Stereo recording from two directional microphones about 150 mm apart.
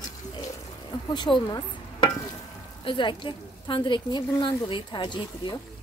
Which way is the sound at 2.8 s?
35° left (ahead or behind).